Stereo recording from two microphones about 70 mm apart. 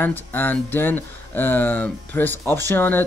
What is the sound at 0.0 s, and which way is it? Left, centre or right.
Speech, left.